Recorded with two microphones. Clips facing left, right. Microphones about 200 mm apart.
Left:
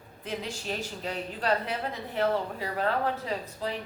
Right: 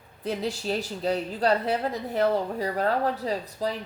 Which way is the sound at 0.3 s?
35° right (ahead or behind).